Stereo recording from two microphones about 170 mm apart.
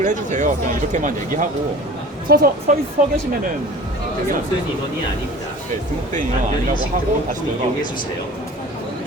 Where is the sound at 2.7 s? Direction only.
50° right (ahead or behind).